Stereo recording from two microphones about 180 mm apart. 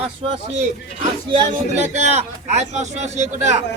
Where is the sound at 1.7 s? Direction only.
40° right (ahead or behind).